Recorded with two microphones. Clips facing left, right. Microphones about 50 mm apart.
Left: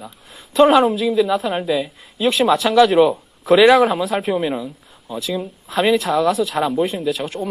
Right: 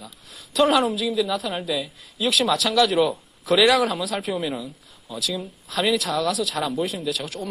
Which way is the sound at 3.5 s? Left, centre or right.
Left.